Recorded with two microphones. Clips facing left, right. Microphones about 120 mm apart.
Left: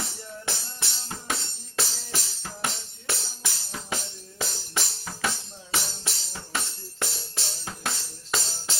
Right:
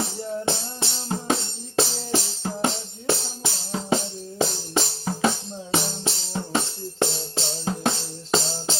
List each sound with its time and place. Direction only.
0.0 s music: 25° right (ahead or behind)